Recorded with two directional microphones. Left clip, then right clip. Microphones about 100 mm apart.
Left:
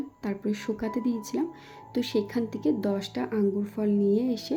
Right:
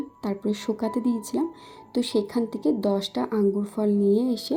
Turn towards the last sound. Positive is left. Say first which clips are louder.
# right 3 dB
turn(degrees=-30)  # may be behind; listen again after turning